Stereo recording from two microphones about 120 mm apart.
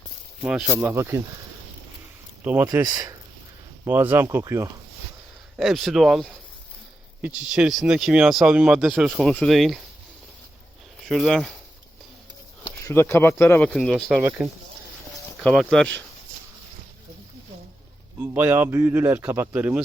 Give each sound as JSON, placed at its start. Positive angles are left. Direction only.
{"t": 0.4, "sound": "speech", "side_deg": -5}
{"t": 0.8, "sound": "speech", "side_deg": -20}
{"t": 2.4, "sound": "speech", "side_deg": -15}
{"t": 2.6, "sound": "speech", "side_deg": -25}
{"t": 3.8, "sound": "speech", "side_deg": -15}
{"t": 5.5, "sound": "speech", "side_deg": 0}
{"t": 11.0, "sound": "speech", "side_deg": 0}
{"t": 12.8, "sound": "speech", "side_deg": 20}
{"t": 13.6, "sound": "speech", "side_deg": 10}
{"t": 14.4, "sound": "speech", "side_deg": -5}
{"t": 18.2, "sound": "speech", "side_deg": -15}